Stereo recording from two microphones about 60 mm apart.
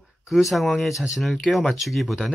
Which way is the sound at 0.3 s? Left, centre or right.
Centre.